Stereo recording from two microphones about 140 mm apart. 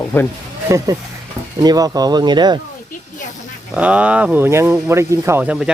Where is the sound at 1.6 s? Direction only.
25° right (ahead or behind).